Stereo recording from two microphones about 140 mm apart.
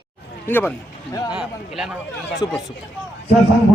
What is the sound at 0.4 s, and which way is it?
Speech, 15° left (ahead or behind).